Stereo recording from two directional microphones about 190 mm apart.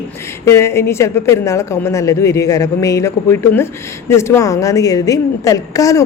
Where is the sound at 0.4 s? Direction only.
15° left (ahead or behind).